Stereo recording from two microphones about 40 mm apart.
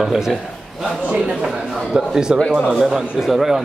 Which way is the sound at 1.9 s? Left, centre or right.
Centre.